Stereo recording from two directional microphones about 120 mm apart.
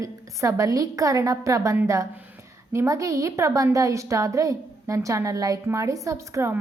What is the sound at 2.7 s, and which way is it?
A woman's voice, 25° right (ahead or behind).